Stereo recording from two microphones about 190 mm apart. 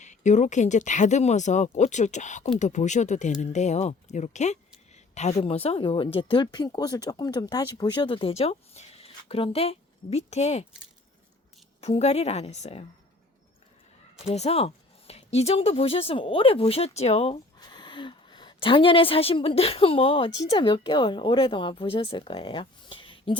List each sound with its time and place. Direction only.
0.0 s a woman's voice: 40° left (ahead or behind)
11.8 s speech: 35° left (ahead or behind)
14.3 s a woman's voice: 35° left (ahead or behind)